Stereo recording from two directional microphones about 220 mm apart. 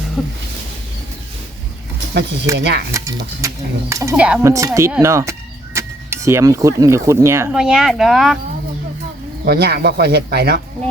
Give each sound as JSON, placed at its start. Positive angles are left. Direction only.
{"t": 0.2, "sound": "a sound", "side_deg": 0}
{"t": 2.6, "sound": "speech", "side_deg": -50}
{"t": 2.9, "sound": "speech", "side_deg": -15}
{"t": 9.4, "sound": "speech", "side_deg": -45}